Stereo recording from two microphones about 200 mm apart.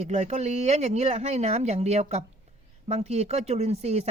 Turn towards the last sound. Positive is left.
turn(degrees=-30)  # may be behind; listen again after turning